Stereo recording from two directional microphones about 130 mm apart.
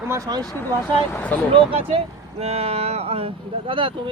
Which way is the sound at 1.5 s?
45° right (ahead or behind).